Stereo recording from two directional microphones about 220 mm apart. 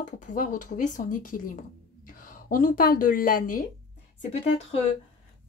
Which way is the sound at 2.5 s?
40° left (ahead or behind).